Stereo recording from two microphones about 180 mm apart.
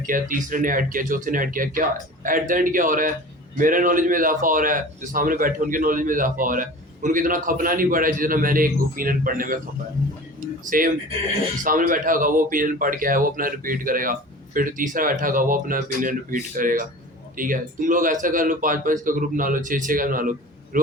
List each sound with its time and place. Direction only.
0.0 s a man's voice: 50° right (ahead or behind)
10.7 s a man's voice: 50° right (ahead or behind)